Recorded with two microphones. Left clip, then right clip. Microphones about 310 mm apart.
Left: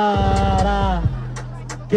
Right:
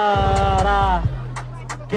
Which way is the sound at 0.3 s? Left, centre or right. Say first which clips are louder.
Right 2 dB; centre.